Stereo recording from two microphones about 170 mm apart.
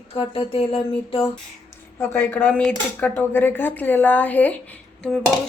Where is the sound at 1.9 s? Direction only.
15° left (ahead or behind).